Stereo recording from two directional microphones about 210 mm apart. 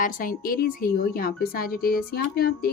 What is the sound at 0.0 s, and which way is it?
A woman's voice, 40° left (ahead or behind).